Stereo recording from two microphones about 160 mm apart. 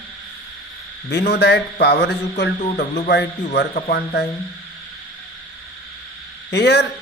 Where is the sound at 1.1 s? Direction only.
90° left.